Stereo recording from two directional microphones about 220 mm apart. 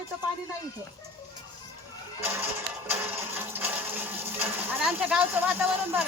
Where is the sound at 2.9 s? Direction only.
10° right (ahead or behind).